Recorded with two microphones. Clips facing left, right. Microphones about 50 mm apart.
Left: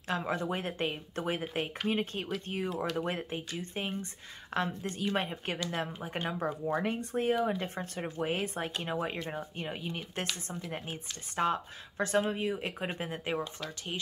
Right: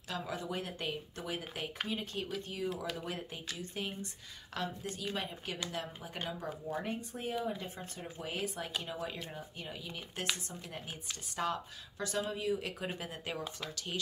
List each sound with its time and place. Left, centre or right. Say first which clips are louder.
0.1 s speech: left 6 dB; left
4.6 s speech: left 6 dB; left
6.4 s speech: left 9 dB; left
8.3 s speech: left 5 dB; left
11.3 s speech: left 6 dB; left